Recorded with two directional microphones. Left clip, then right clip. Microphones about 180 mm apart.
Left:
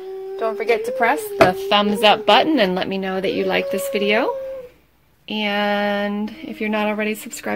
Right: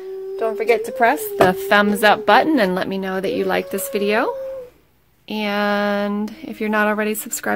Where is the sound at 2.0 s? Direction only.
15° right (ahead or behind).